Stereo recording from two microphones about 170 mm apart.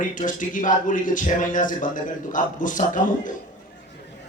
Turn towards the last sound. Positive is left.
turn(degrees=50)  # may be behind; listen again after turning